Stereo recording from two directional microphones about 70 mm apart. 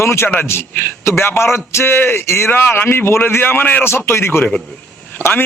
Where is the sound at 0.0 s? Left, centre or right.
Left.